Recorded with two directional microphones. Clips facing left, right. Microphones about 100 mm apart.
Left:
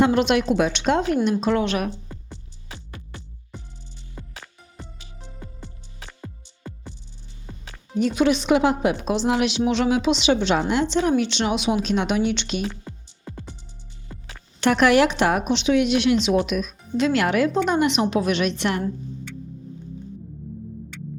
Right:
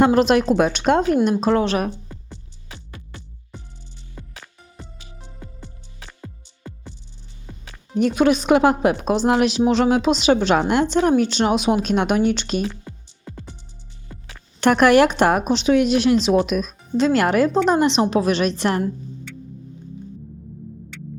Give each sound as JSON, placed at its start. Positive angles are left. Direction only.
{"t": 0.0, "sound": "a woman's voice", "side_deg": -40}
{"t": 2.0, "sound": "music", "side_deg": 20}
{"t": 7.9, "sound": "a woman's voice", "side_deg": -50}
{"t": 12.8, "sound": "music", "side_deg": 15}
{"t": 14.6, "sound": "a woman's voice", "side_deg": -50}